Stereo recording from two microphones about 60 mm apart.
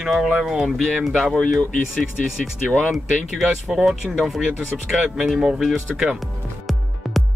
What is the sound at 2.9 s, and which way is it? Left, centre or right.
Speech, centre.